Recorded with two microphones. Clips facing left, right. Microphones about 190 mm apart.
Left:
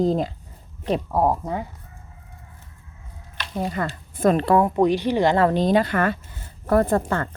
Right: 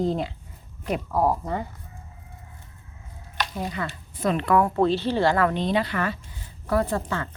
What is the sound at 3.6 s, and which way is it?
Speech, 45° left (ahead or behind).